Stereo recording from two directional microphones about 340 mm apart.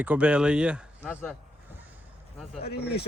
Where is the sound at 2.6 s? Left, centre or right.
Left.